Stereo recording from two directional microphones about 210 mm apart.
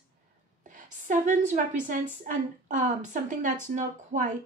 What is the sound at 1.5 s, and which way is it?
Speech, 40° right (ahead or behind).